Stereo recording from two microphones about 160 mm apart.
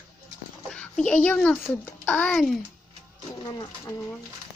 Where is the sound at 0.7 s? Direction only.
5° left (ahead or behind).